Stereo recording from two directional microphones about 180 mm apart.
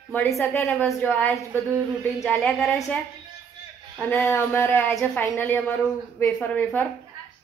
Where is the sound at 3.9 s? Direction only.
10° left (ahead or behind).